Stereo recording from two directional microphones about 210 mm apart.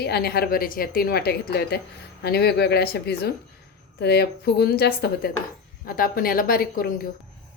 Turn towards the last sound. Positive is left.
turn(degrees=45)  # may be behind; listen again after turning